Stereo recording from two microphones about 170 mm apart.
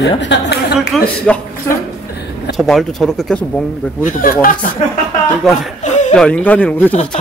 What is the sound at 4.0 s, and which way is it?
Speech, 55° left (ahead or behind).